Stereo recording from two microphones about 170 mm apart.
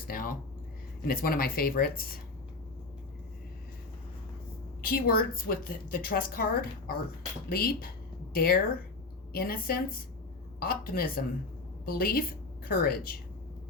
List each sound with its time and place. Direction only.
0.1 s a woman's voice: 55° left (ahead or behind)
4.8 s a woman's voice: 60° left (ahead or behind)